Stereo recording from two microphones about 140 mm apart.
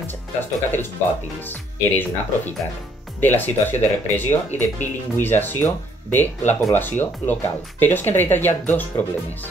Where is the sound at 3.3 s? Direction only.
15° left (ahead or behind).